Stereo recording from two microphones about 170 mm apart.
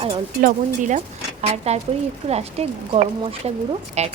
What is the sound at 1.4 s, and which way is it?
Speech, 40° right (ahead or behind).